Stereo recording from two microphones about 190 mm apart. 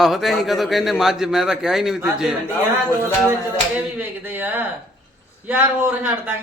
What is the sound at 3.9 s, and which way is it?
A man's voice, 10° right (ahead or behind).